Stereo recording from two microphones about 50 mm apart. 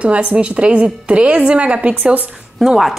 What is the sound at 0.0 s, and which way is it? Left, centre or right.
A woman's voice, right.